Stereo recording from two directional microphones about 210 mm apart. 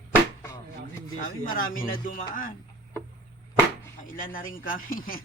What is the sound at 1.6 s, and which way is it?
Speech, 40° left (ahead or behind).